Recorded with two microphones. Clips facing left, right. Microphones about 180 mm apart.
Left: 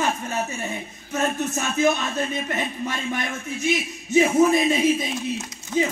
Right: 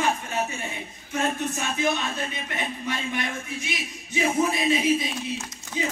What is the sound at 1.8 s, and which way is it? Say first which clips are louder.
Speech: left 6 dB; 45° left (ahead or behind).